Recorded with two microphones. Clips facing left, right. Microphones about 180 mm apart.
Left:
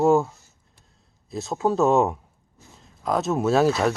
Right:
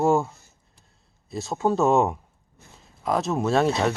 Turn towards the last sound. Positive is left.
turn(degrees=5)  # may be behind; listen again after turning